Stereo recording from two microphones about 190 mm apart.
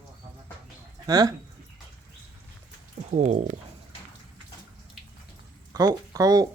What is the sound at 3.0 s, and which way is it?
Speech, 40° right (ahead or behind).